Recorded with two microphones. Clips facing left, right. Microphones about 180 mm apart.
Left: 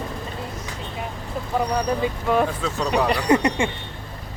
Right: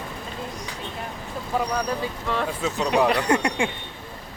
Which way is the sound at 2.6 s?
5° right (ahead or behind).